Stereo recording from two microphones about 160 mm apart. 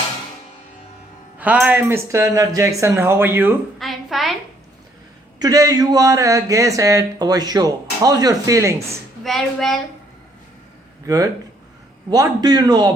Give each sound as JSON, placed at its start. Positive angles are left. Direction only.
{"t": 1.4, "sound": "speech", "side_deg": -10}
{"t": 3.8, "sound": "a sound", "side_deg": 0}
{"t": 5.4, "sound": "speech", "side_deg": -20}
{"t": 9.2, "sound": "speech", "side_deg": 0}
{"t": 11.0, "sound": "speech", "side_deg": -20}